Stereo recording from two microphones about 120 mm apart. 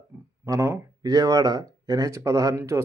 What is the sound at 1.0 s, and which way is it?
Speech, 30° right (ahead or behind).